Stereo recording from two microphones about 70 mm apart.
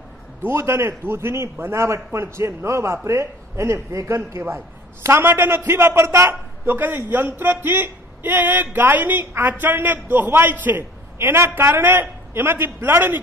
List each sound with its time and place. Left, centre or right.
0.4 s a man's voice: right